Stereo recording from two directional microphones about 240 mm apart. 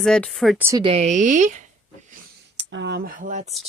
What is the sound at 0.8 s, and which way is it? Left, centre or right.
Speech, right.